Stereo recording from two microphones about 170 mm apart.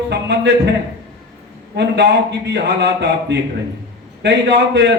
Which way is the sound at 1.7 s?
85° right.